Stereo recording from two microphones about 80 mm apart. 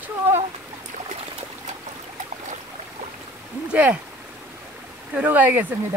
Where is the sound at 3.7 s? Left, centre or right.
Centre.